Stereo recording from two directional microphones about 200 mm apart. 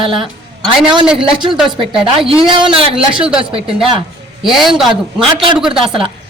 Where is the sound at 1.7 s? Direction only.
25° right (ahead or behind).